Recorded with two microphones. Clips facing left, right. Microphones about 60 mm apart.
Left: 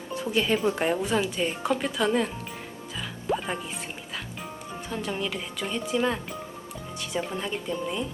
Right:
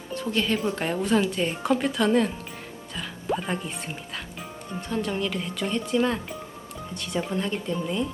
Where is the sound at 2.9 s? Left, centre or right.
Centre.